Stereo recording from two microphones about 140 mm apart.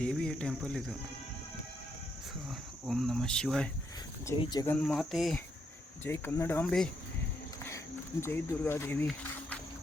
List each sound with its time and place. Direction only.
0.0 s speech: 5° left (ahead or behind)
2.5 s speech: centre (ahead or behind)
4.4 s speech: 30° left (ahead or behind)
4.6 s speech: 10° left (ahead or behind)
6.1 s speech: 15° left (ahead or behind)
8.2 s speech: 15° left (ahead or behind)